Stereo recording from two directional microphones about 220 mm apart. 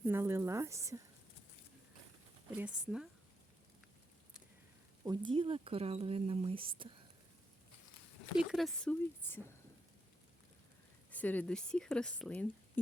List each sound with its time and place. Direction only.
0.0 s a sound: 10° right (ahead or behind)
2.5 s speech: 5° right (ahead or behind)
5.0 s speech: 20° right (ahead or behind)
8.4 s speech: centre (ahead or behind)
11.1 s speech: 5° left (ahead or behind)